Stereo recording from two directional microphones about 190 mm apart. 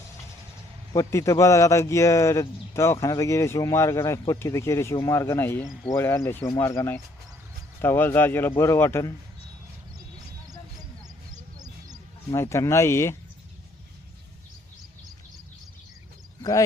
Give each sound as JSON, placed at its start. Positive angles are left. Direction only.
{"t": 0.9, "sound": "speech", "side_deg": 15}
{"t": 11.5, "sound": "a sound", "side_deg": -20}
{"t": 12.3, "sound": "speech", "side_deg": 15}
{"t": 16.4, "sound": "speech", "side_deg": 20}